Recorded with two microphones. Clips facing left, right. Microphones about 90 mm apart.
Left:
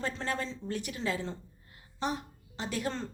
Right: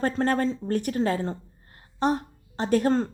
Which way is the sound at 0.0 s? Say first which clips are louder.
Right 11 dB; 50° right (ahead or behind).